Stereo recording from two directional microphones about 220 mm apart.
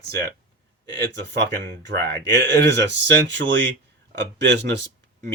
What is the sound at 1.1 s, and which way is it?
Speech, 50° right (ahead or behind).